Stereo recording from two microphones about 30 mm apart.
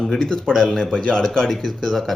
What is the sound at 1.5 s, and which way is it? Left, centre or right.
Speech, centre.